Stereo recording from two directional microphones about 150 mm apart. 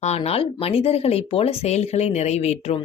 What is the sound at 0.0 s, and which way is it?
A woman's voice, 45° left (ahead or behind).